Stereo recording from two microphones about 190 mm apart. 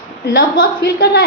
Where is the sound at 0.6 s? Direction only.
55° left (ahead or behind).